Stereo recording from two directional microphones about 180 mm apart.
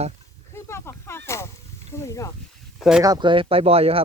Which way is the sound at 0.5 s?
15° left (ahead or behind).